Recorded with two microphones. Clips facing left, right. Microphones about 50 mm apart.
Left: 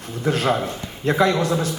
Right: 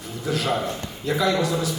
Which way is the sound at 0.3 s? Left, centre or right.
Left.